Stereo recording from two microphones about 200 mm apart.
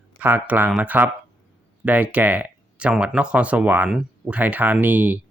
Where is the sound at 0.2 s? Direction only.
10° right (ahead or behind).